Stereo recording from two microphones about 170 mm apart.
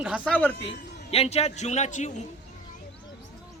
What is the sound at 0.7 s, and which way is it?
A man's voice, 35° left (ahead or behind).